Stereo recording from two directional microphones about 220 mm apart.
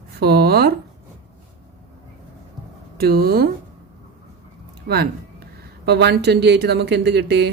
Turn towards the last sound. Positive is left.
turn(degrees=-50)  # may be behind; listen again after turning